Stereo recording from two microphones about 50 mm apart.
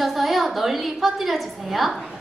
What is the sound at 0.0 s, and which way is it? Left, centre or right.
A woman's voice, centre.